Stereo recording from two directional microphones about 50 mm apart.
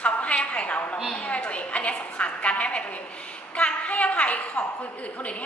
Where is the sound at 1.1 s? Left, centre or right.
Left.